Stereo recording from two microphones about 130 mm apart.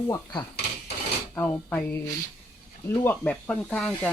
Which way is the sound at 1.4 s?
15° left (ahead or behind).